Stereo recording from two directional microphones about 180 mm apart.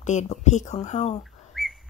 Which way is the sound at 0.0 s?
40° left (ahead or behind).